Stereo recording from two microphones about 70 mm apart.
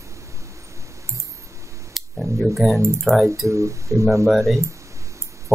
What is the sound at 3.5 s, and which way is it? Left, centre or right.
Speech, right.